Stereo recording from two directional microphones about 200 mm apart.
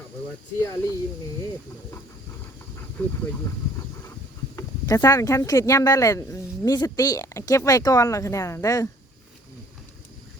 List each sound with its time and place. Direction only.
0.6 s speech: 15° left (ahead or behind)
4.5 s speech: 15° left (ahead or behind)